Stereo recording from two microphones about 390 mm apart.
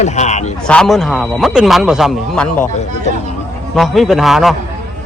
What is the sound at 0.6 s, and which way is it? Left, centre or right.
Speech, centre.